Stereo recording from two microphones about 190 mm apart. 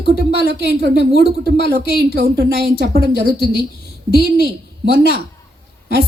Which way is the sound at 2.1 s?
55° right (ahead or behind).